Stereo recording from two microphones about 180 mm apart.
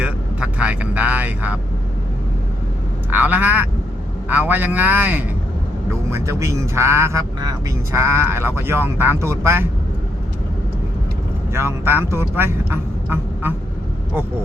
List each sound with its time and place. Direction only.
0.0 s speech: 5° right (ahead or behind)
3.1 s speech: 10° right (ahead or behind)
11.5 s speech: 15° right (ahead or behind)